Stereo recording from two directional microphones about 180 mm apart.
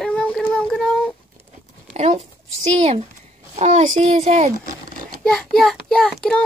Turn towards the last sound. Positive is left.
turn(degrees=0)  # may be behind; listen again after turning